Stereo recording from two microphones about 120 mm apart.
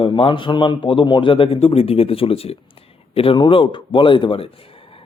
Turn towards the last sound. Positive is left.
turn(degrees=45)  # may be behind; listen again after turning